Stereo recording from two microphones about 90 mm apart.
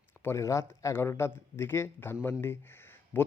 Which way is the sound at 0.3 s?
35° left (ahead or behind).